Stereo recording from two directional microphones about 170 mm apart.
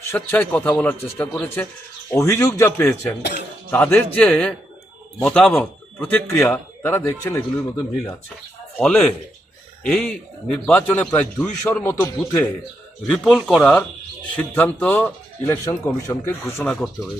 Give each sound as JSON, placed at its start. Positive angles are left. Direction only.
{"t": 0.1, "sound": "speech", "side_deg": 10}
{"t": 8.8, "sound": "speech", "side_deg": 5}
{"t": 13.1, "sound": "speech", "side_deg": 0}
{"t": 16.6, "sound": "speech", "side_deg": 0}